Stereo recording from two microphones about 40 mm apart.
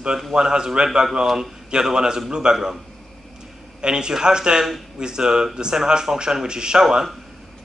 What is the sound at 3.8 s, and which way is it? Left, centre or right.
Speech, centre.